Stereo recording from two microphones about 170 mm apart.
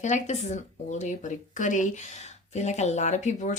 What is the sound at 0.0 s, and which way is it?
Speech, 45° left (ahead or behind).